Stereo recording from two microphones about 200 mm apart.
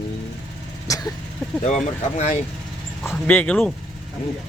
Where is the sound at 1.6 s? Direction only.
35° left (ahead or behind).